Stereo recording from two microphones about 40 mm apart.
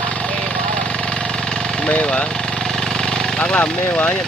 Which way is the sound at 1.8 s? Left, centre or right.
Left.